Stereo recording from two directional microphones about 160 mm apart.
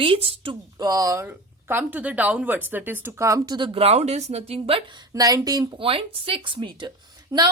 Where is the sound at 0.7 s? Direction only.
20° right (ahead or behind).